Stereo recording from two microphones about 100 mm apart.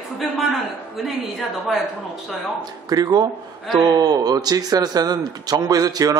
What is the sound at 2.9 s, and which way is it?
A man's voice, 40° right (ahead or behind).